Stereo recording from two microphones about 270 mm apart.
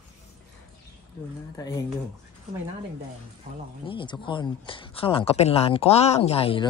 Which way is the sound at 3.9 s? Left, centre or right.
Centre.